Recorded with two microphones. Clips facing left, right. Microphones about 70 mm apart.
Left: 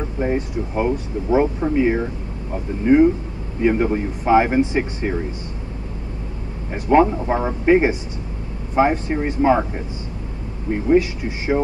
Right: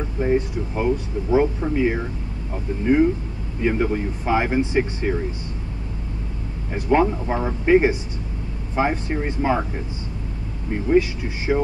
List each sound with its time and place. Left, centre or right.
0.2 s speech: left
6.7 s speech: left
10.9 s speech: left